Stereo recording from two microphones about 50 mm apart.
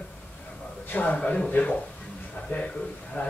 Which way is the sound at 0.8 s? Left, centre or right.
Left.